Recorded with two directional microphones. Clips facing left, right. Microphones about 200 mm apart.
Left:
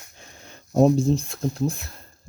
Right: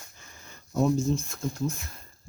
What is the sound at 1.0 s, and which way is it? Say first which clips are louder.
Speech: left 5 dB; 35° left (ahead or behind).